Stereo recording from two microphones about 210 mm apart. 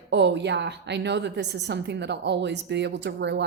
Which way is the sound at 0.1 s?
55° right (ahead or behind).